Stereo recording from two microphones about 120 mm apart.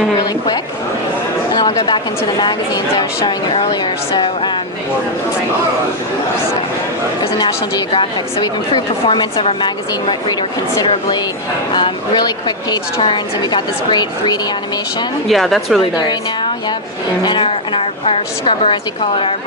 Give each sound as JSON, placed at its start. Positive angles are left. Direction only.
{"t": 1.5, "sound": "a woman's voice", "side_deg": 35}
{"t": 7.9, "sound": "a woman's voice", "side_deg": 40}
{"t": 11.7, "sound": "a woman's voice", "side_deg": 40}
{"t": 15.2, "sound": "speech", "side_deg": 0}
{"t": 17.2, "sound": "a woman's voice", "side_deg": 45}